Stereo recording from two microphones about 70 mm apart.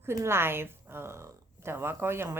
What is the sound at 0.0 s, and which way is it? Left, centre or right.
A woman's voice, right.